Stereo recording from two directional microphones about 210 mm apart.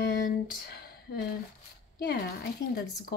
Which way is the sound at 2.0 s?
45° left (ahead or behind).